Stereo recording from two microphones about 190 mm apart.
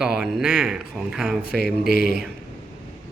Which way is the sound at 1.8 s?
55° right (ahead or behind).